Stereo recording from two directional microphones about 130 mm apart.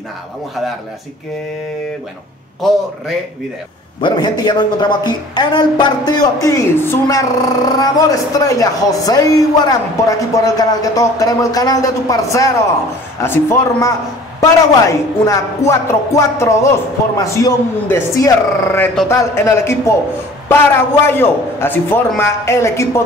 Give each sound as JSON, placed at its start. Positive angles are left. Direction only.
{"t": 4.0, "sound": "a woman's voice", "side_deg": 35}
{"t": 6.4, "sound": "a man's voice", "side_deg": 20}